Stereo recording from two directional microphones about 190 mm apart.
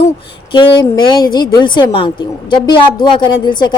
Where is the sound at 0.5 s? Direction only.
25° left (ahead or behind).